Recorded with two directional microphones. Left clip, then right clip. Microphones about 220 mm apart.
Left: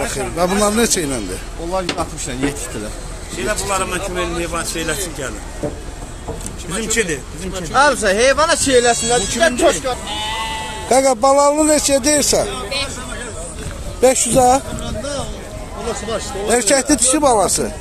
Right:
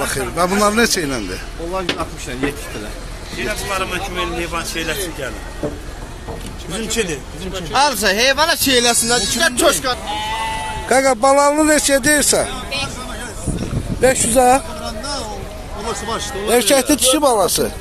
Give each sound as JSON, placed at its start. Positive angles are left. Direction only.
{"t": 0.0, "sound": "speech", "side_deg": -5}
{"t": 1.7, "sound": "speech", "side_deg": 60}
{"t": 3.4, "sound": "speech", "side_deg": 30}
{"t": 6.7, "sound": "speech", "side_deg": 10}
{"t": 7.7, "sound": "speech", "side_deg": -55}
{"t": 10.0, "sound": "bleat", "side_deg": 50}
{"t": 10.9, "sound": "speech", "side_deg": 0}
{"t": 14.0, "sound": "speech", "side_deg": 0}
{"t": 16.4, "sound": "speech", "side_deg": -10}